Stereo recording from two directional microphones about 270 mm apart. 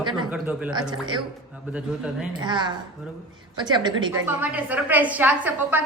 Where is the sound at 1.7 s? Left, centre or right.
Centre.